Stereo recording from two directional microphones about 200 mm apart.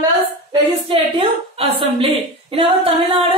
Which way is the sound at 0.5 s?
25° right (ahead or behind).